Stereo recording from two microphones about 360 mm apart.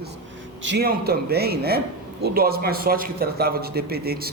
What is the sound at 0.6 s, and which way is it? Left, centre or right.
A man's voice, right.